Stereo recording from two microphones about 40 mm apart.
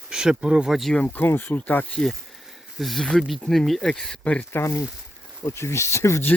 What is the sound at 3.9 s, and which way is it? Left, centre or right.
Speech, centre.